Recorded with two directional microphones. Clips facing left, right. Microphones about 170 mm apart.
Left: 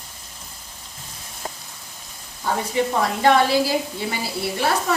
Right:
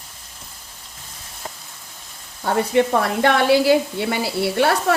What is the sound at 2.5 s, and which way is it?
A woman's voice, 65° right (ahead or behind).